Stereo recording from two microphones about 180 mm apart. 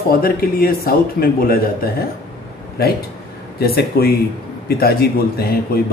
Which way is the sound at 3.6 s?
60° left (ahead or behind).